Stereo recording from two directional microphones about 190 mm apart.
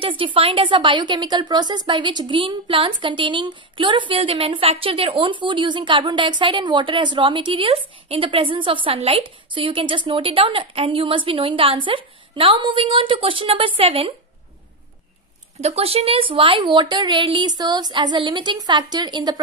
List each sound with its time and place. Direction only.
0.0 s a woman's voice: 25° right (ahead or behind)
15.6 s a woman's voice: 30° right (ahead or behind)